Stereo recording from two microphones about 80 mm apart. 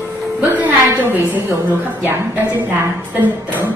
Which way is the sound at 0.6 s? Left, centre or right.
Right.